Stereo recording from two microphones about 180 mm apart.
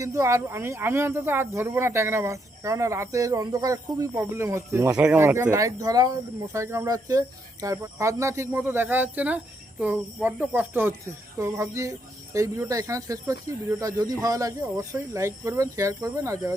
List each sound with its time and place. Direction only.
0.0 s speech: 15° right (ahead or behind)